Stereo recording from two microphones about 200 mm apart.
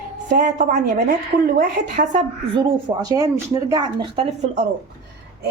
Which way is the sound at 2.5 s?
20° right (ahead or behind).